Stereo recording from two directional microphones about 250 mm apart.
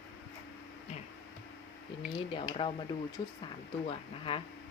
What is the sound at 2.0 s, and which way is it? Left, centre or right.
Speech, left.